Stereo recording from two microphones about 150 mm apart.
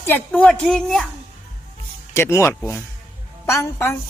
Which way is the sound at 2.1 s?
20° left (ahead or behind).